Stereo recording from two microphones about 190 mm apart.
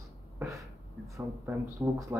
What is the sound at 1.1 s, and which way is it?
Speech, 15° right (ahead or behind).